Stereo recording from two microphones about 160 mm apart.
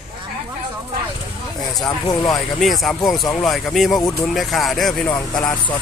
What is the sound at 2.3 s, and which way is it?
Speech, centre (ahead or behind).